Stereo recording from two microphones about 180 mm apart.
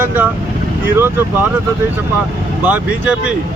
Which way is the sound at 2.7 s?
10° right (ahead or behind).